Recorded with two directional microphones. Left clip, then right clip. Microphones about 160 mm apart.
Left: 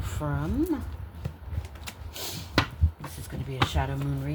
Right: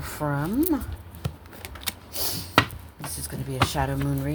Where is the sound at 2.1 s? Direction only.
35° right (ahead or behind).